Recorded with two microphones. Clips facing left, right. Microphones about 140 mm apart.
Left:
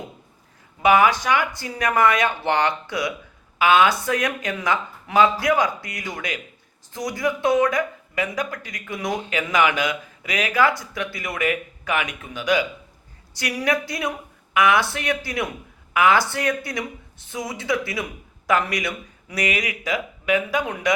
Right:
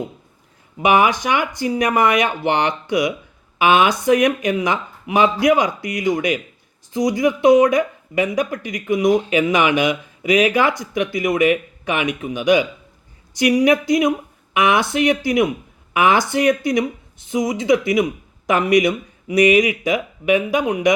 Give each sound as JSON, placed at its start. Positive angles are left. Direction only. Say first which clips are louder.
{"t": 0.8, "sound": "speech", "louder": "right 1 dB", "side_deg": -20}